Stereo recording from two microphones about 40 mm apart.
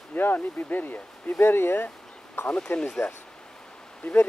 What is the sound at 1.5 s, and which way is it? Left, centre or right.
Speech, left.